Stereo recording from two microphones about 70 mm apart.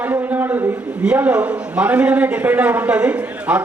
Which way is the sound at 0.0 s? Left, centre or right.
Right.